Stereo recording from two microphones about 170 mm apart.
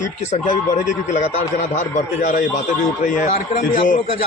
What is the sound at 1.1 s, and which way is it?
Speech, 45° left (ahead or behind).